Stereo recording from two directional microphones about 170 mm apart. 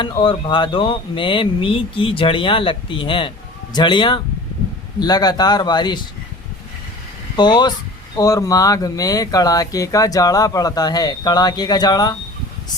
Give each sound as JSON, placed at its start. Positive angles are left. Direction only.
{"t": 0.0, "sound": "speech", "side_deg": 30}
{"t": 7.3, "sound": "speech", "side_deg": 25}